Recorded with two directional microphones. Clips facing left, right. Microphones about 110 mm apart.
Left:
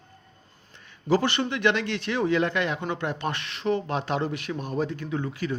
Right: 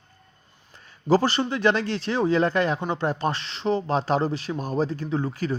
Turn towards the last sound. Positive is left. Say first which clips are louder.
# right 3 dB
turn(degrees=-40)  # may be behind; listen again after turning